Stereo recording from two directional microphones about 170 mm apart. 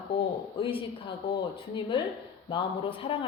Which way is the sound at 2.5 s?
30° left (ahead or behind).